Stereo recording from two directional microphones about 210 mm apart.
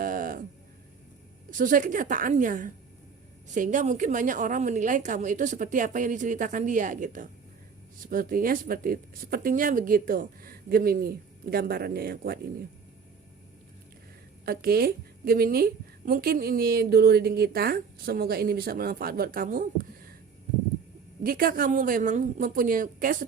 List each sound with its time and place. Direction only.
0.0 s a sound: 40° right (ahead or behind)
1.5 s a woman's voice: 40° right (ahead or behind)
14.4 s a woman's voice: 45° right (ahead or behind)
21.2 s a woman's voice: 45° right (ahead or behind)